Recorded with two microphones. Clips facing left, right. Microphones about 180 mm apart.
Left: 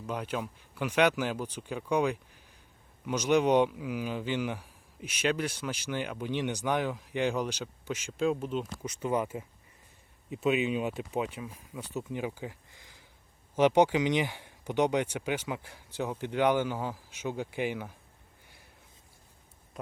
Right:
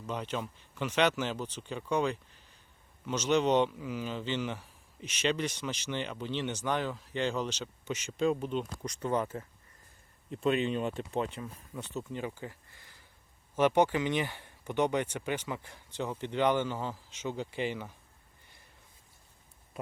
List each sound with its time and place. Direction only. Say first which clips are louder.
0.1 s a man's voice: left 1 dB; 10° left (ahead or behind)